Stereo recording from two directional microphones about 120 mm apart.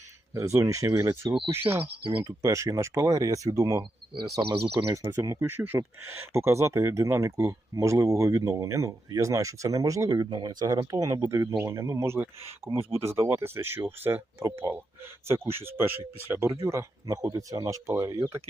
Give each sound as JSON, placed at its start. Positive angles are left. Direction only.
{"t": 0.3, "sound": "speech", "side_deg": -25}
{"t": 1.8, "sound": "speech", "side_deg": -45}
{"t": 2.2, "sound": "speech", "side_deg": -25}
{"t": 5.0, "sound": "speech", "side_deg": -30}
{"t": 5.4, "sound": "speech", "side_deg": -15}